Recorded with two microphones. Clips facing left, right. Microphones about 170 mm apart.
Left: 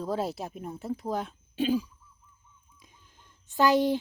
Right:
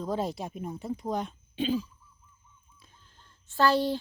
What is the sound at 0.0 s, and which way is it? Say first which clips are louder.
A woman's voice: even; 5° left (ahead or behind).